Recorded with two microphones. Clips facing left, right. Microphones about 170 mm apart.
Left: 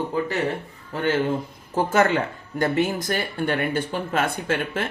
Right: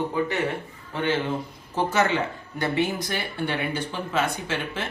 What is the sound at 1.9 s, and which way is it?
A man's voice, 50° left (ahead or behind).